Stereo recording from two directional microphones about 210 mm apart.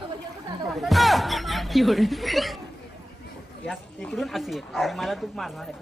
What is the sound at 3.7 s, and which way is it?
Speech, centre (ahead or behind).